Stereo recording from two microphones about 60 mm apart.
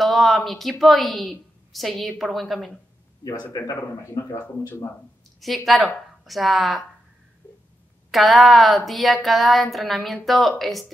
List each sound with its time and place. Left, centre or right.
0.0 s a woman's voice: centre
3.7 s speech: left
5.4 s speech: centre
8.1 s speech: centre